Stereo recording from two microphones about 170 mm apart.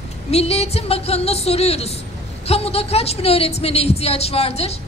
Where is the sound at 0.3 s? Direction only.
35° left (ahead or behind).